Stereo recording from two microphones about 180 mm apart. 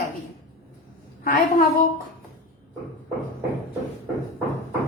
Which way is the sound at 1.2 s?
50° left (ahead or behind).